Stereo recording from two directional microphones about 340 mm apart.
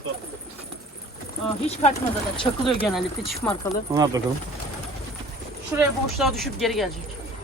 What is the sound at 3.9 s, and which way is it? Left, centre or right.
Speech, centre.